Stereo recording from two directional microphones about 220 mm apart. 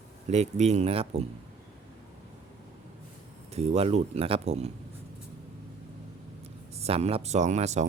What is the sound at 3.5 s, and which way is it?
Speech, 30° right (ahead or behind).